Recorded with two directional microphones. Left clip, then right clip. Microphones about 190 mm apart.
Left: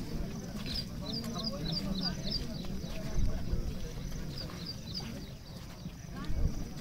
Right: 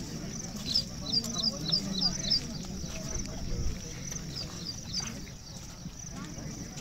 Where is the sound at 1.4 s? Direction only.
40° left (ahead or behind).